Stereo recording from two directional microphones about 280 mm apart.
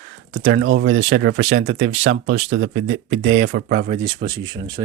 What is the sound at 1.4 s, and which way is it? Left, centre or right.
Speech, right.